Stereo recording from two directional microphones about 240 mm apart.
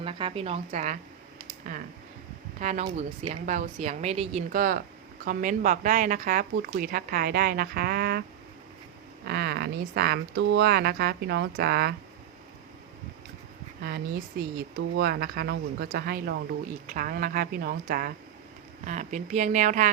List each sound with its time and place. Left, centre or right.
0.0 s a woman's voice: right
2.6 s a woman's voice: right
9.2 s speech: right
13.8 s a woman's voice: right